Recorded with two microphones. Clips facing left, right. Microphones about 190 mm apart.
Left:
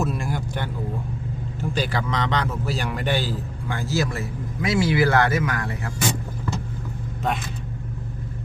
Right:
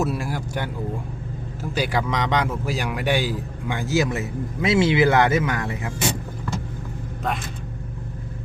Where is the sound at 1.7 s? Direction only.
10° right (ahead or behind).